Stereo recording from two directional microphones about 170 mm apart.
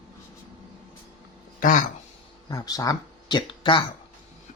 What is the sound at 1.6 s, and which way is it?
Speech, 50° left (ahead or behind).